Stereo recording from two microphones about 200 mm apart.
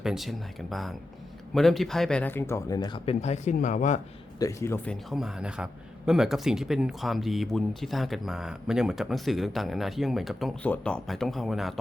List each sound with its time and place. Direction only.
0.0 s speech: centre (ahead or behind); by 4.0 s 35° left (ahead or behind)
4.4 s speech: 15° left (ahead or behind)
5.1 s speech: centre (ahead or behind)